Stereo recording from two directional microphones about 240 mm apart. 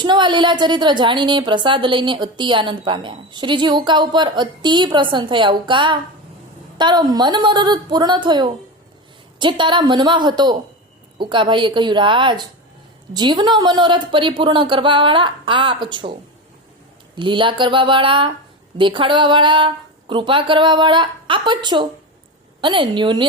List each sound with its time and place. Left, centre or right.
0.0 s a woman's voice: centre
17.2 s a woman's voice: centre